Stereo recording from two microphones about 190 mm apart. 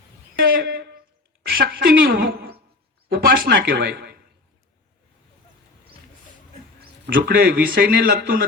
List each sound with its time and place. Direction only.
0.4 s a woman's voice: 50° right (ahead or behind)
7.1 s a man's voice: 55° right (ahead or behind)